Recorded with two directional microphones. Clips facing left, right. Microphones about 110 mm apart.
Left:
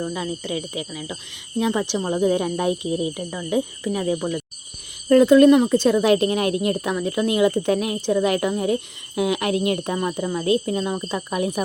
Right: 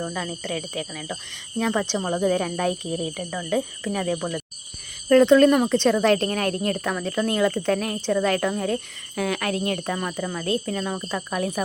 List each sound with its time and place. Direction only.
0.1 s speech: 10° left (ahead or behind)